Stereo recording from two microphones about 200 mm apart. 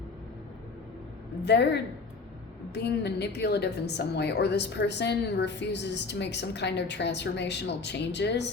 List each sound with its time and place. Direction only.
1.4 s a woman's voice: 60° left (ahead or behind)